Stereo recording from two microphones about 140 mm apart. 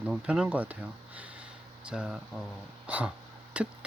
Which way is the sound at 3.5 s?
10° right (ahead or behind).